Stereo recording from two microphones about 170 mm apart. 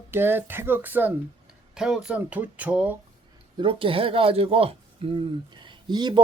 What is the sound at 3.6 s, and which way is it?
Speech, 30° right (ahead or behind).